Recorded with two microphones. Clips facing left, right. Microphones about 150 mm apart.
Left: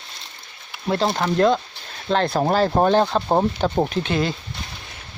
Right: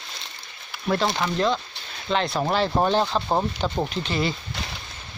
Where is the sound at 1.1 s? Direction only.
50° left (ahead or behind).